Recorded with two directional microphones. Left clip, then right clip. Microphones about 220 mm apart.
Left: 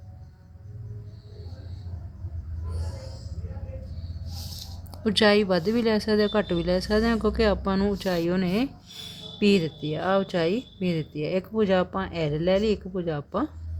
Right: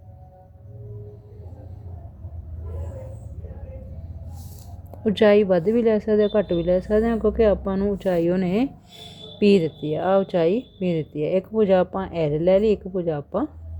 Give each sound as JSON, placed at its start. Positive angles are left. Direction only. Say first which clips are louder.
{"t": 5.0, "sound": "speech", "louder": "right 4 dB", "side_deg": -10}